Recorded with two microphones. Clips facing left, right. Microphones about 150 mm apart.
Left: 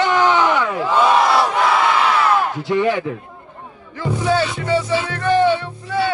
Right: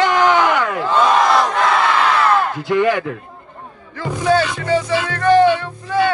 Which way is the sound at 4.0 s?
50° right (ahead or behind).